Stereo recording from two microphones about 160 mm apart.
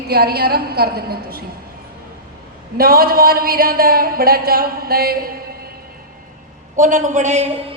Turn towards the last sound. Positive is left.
turn(degrees=-45)  # may be behind; listen again after turning